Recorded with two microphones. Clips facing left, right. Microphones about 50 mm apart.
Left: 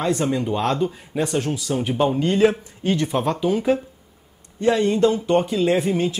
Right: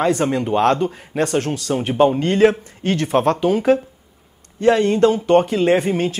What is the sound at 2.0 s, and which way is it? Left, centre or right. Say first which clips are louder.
Speech: right 6 dB; right.